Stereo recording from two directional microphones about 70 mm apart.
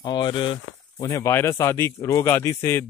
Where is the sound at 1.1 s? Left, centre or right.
Left.